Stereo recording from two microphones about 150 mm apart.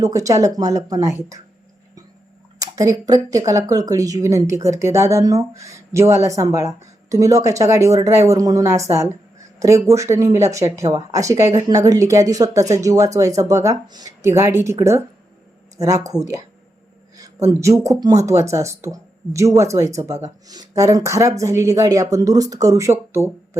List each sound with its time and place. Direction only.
0.0 s speech: 20° right (ahead or behind)
2.6 s speech: 25° right (ahead or behind)
16.0 s speech: 20° right (ahead or behind)